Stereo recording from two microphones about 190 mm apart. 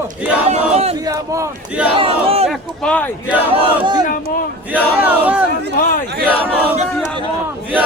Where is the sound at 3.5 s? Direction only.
25° right (ahead or behind).